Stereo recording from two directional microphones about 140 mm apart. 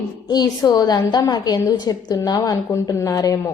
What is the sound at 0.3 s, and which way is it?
A woman's voice, 30° left (ahead or behind).